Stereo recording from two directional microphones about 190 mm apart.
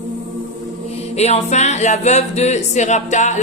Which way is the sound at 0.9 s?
35° left (ahead or behind).